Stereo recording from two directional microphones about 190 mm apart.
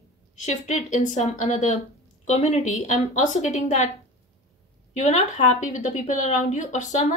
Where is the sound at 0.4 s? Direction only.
40° left (ahead or behind).